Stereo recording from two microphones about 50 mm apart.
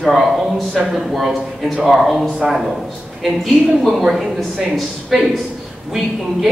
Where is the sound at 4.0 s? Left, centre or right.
Centre.